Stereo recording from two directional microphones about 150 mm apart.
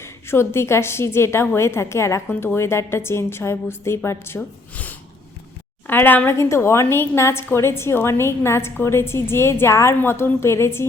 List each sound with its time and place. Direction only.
0.0 s a woman's voice: 15° left (ahead or behind)